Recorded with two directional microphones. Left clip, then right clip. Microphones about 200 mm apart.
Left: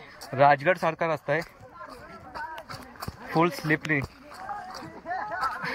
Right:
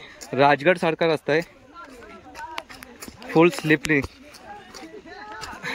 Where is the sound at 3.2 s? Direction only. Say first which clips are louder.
Right 7 dB; 15° right (ahead or behind).